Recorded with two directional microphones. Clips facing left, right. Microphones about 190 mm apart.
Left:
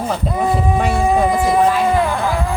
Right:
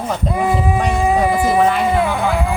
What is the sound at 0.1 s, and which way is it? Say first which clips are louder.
Speech: right 2 dB; 5° right (ahead or behind).